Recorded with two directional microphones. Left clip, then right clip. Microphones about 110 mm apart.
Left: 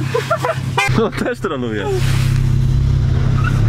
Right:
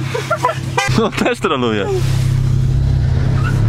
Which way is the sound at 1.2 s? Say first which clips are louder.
Right 5 dB; 30° right (ahead or behind).